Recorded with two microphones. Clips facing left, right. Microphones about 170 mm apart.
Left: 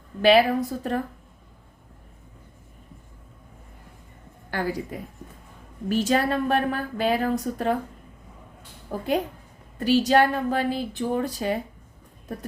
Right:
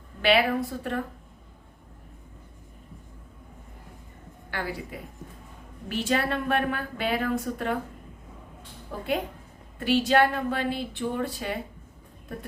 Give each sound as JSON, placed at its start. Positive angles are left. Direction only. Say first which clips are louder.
{"t": 0.2, "sound": "a woman's voice", "louder": "left 5 dB", "side_deg": 40}
{"t": 4.5, "sound": "a woman's voice", "louder": "left 5 dB", "side_deg": 40}
{"t": 8.9, "sound": "a woman's voice", "louder": "left 4 dB", "side_deg": 40}